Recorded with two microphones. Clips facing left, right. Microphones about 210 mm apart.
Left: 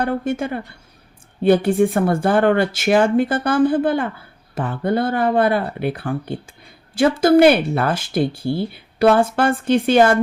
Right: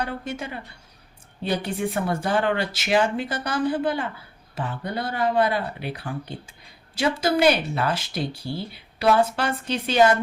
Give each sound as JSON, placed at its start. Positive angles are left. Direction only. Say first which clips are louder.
{"t": 0.0, "sound": "speech", "louder": "left 9 dB", "side_deg": 50}